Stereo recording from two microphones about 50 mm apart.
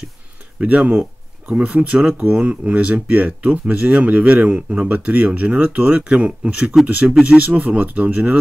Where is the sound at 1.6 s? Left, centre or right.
Right.